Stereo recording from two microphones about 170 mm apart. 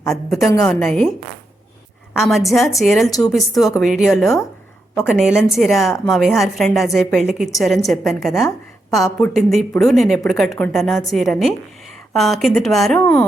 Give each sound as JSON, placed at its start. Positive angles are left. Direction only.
{"t": 0.1, "sound": "a woman's voice", "side_deg": 0}
{"t": 2.1, "sound": "a woman's voice", "side_deg": 0}
{"t": 3.1, "sound": "speech", "side_deg": 20}
{"t": 3.3, "sound": "a woman's voice", "side_deg": 0}